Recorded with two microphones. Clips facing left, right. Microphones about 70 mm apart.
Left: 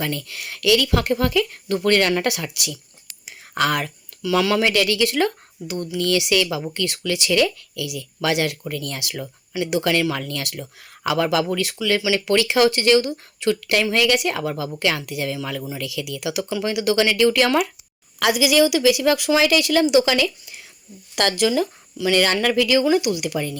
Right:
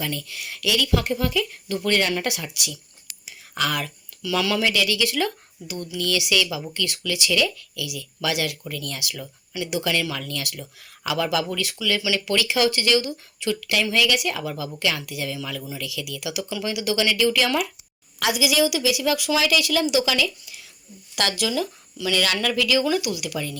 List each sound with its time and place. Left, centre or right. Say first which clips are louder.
0.0 s speech: left 3 dB; left
3.1 s a sound: left 2 dB; left
3.8 s speech: left 5 dB; left
4.7 s a woman's voice: left 4 dB; left